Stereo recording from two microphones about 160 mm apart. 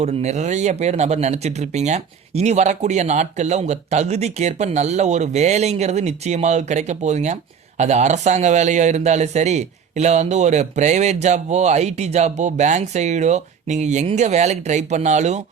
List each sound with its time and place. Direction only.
0.0 s a man's voice: 45° right (ahead or behind)